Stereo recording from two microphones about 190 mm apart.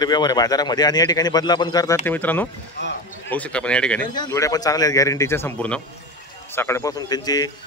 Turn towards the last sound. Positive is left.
turn(degrees=20)  # may be behind; listen again after turning